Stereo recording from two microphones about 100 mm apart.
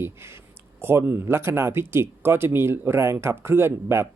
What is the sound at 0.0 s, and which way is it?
Speech, 25° right (ahead or behind).